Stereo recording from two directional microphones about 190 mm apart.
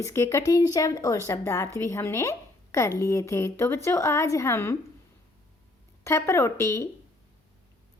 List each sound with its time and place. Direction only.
0.0 s a woman's voice: 15° left (ahead or behind)
6.1 s a woman's voice: 15° left (ahead or behind)